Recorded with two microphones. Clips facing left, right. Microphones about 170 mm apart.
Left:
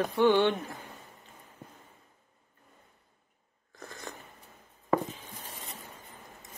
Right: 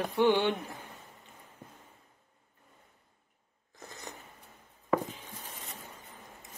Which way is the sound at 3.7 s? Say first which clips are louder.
Left 3 dB; 20° right (ahead or behind).